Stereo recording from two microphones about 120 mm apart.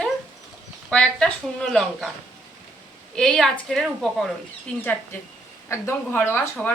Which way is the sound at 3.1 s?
5° left (ahead or behind).